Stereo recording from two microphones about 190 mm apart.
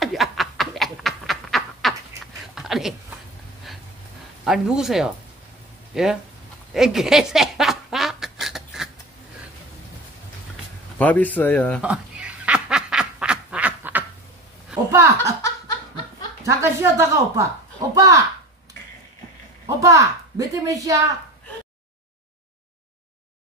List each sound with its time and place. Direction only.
0.0 s snicker: centre (ahead or behind)
2.5 s a sound: centre (ahead or behind)
4.5 s speech: 5° right (ahead or behind)
6.7 s a sound: centre (ahead or behind)
11.0 s speech: 10° left (ahead or behind)
11.8 s duck: 5° right (ahead or behind)
14.9 s speech: 15° right (ahead or behind)
16.4 s a woman's voice: 15° right (ahead or behind)
19.6 s a woman's voice: 15° right (ahead or behind)